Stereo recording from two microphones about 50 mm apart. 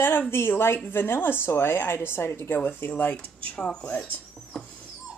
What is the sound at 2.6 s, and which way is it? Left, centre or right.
Speech, left.